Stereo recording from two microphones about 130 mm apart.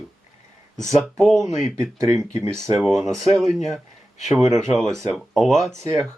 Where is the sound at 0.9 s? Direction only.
5° left (ahead or behind).